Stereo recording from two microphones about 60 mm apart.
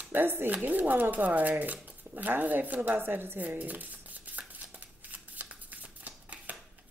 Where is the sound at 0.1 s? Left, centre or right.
Right.